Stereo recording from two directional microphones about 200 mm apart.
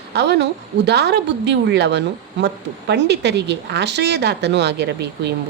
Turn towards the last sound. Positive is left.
turn(degrees=-60)  # may be behind; listen again after turning